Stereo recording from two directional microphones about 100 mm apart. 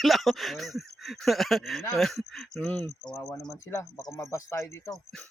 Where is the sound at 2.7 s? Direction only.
15° left (ahead or behind).